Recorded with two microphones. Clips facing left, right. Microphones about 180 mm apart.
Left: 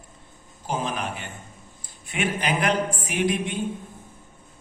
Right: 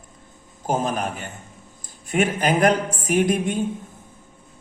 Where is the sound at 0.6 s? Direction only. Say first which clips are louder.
Right 5 dB; 45° right (ahead or behind).